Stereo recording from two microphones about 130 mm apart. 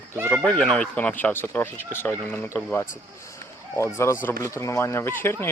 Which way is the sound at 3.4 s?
20° left (ahead or behind).